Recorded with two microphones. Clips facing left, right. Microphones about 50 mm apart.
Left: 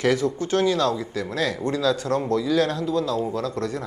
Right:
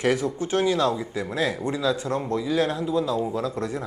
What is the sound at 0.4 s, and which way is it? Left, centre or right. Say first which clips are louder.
Speech: even; right.